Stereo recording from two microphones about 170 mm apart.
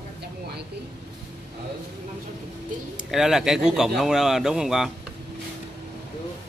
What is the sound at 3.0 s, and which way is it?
Speech, centre (ahead or behind).